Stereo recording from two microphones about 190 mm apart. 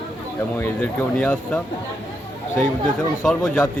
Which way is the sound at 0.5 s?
10° left (ahead or behind).